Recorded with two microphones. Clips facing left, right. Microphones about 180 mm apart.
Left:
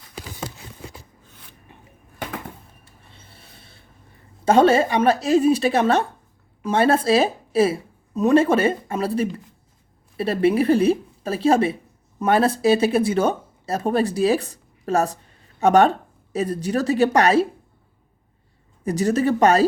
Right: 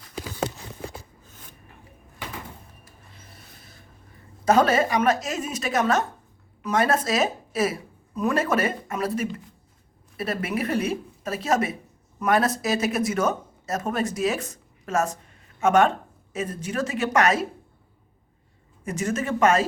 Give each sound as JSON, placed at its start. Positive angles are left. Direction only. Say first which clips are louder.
{"t": 1.3, "sound": "a sound", "louder": "right 1 dB", "side_deg": -45}
{"t": 2.8, "sound": "rub", "louder": "even", "side_deg": 30}
{"t": 4.4, "sound": "a woman's voice", "louder": "left 4 dB", "side_deg": 30}
{"t": 18.9, "sound": "a woman's voice", "louder": "left 7 dB", "side_deg": 35}